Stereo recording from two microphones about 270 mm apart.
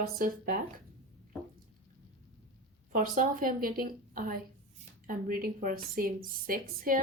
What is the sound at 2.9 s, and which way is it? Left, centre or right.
A woman's voice, right.